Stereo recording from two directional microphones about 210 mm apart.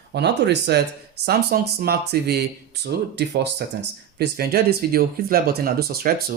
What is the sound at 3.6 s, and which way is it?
Speech, 50° right (ahead or behind).